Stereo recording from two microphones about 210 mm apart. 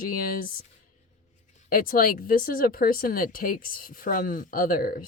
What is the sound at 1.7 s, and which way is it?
Speech, 45° left (ahead or behind).